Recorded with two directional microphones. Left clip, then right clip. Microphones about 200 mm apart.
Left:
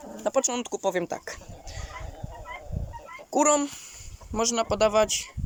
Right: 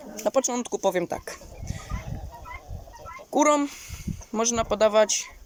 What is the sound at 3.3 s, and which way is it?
Speech, 5° left (ahead or behind).